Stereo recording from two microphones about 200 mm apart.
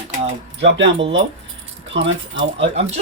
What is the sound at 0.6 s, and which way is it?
Speech, 65° right (ahead or behind).